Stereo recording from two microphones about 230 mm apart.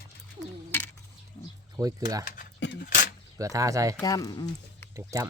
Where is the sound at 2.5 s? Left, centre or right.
Left.